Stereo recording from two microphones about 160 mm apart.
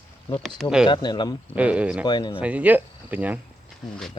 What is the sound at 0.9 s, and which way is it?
Speech, 30° left (ahead or behind).